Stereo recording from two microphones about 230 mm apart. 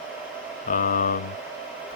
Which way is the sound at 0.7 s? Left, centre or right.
Left.